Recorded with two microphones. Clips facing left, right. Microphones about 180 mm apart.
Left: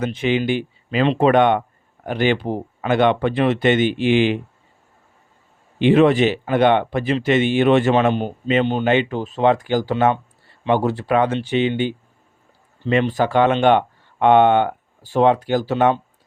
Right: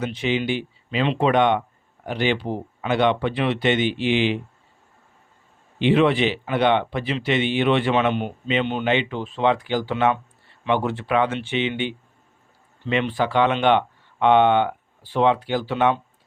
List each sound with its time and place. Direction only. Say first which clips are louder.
0.0 s speech: left 4 dB; 50° left (ahead or behind)
5.8 s speech: left 4 dB; 45° left (ahead or behind)